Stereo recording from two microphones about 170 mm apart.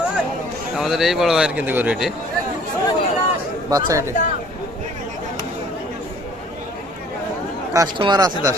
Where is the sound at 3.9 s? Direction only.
15° right (ahead or behind).